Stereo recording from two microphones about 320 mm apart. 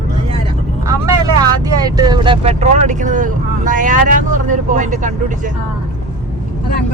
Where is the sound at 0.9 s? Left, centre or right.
Centre.